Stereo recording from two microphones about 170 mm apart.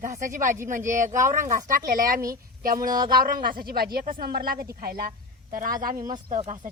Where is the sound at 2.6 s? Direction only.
55° right (ahead or behind).